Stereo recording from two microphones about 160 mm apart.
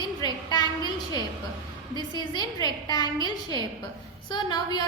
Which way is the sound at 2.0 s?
25° left (ahead or behind).